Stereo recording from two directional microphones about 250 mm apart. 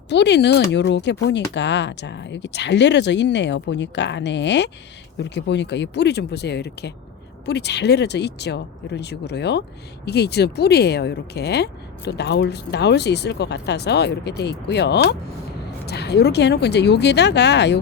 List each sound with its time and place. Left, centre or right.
0.1 s speech: left